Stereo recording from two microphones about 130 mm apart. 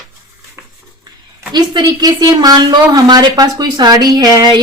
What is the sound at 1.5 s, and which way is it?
A woman's voice, 30° right (ahead or behind).